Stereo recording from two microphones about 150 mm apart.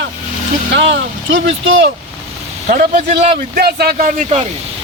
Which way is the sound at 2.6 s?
65° right (ahead or behind).